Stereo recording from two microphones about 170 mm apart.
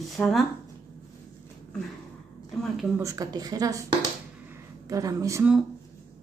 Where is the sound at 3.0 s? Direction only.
20° right (ahead or behind).